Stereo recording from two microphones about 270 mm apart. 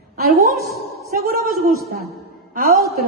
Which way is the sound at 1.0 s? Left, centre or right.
Right.